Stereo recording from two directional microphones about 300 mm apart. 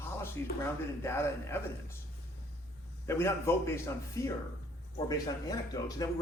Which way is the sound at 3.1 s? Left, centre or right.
Centre.